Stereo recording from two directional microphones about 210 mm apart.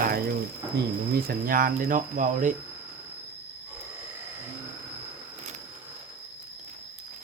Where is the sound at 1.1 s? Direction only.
45° right (ahead or behind).